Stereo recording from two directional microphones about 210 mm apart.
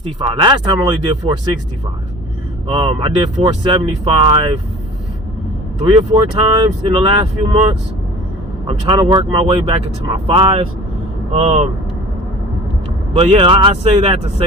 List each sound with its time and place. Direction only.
0.0 s speech: 20° right (ahead or behind)
2.7 s speech: 25° right (ahead or behind)
5.8 s speech: 25° right (ahead or behind)
8.6 s speech: 25° right (ahead or behind)
13.1 s speech: 25° right (ahead or behind)